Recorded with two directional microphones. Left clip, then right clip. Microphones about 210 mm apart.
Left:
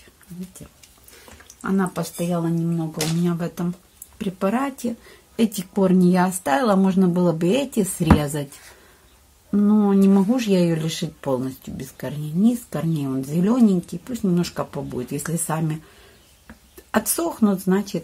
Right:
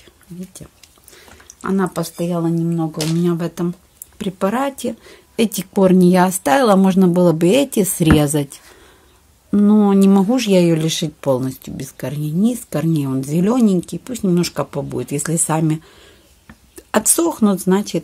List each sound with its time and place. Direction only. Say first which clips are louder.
1.6 s speech: right 4 dB; 50° right (ahead or behind)
9.5 s speech: right 5 dB; 50° right (ahead or behind)
16.9 s speech: right 6 dB; 50° right (ahead or behind)